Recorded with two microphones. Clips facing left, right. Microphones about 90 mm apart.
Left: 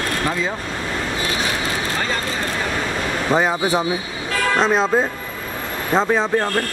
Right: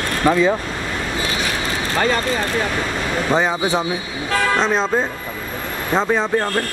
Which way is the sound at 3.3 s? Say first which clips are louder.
Left 1 dB; 5° left (ahead or behind).